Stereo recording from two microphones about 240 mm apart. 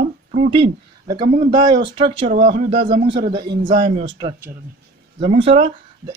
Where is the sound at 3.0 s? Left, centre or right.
Centre.